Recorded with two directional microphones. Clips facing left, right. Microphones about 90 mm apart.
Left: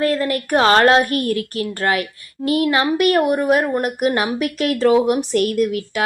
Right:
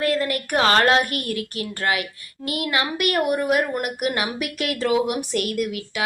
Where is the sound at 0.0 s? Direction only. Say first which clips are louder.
Left 4 dB; 35° left (ahead or behind).